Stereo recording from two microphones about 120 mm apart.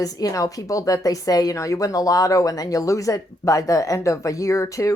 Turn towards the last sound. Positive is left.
turn(degrees=25)  # may be behind; listen again after turning